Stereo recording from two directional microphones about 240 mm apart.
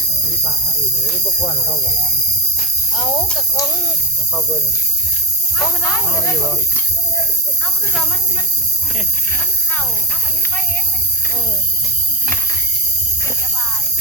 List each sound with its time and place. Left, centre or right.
2.9 s speech: centre
5.5 s speech: centre